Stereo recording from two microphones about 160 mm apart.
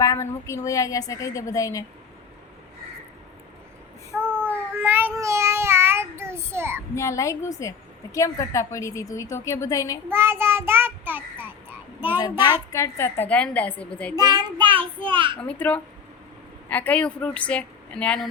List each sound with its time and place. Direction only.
0.0 s a woman's voice: 20° left (ahead or behind)
4.1 s child singing: 10° right (ahead or behind)
6.9 s a woman's voice: 20° left (ahead or behind)
10.1 s child singing: 15° right (ahead or behind)
12.7 s a woman's voice: 15° left (ahead or behind)
14.2 s a child's voice: 25° right (ahead or behind)
15.4 s a woman's voice: 10° left (ahead or behind)